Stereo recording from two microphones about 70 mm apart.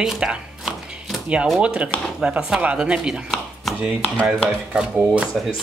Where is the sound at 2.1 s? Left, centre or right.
Centre.